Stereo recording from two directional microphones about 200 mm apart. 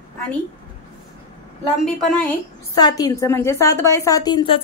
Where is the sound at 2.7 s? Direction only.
20° left (ahead or behind).